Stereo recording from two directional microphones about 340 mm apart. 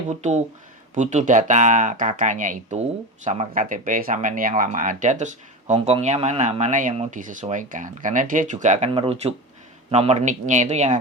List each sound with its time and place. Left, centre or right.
0.2 s speech: centre